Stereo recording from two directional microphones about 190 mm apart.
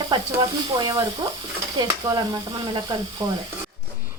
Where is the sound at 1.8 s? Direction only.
25° right (ahead or behind).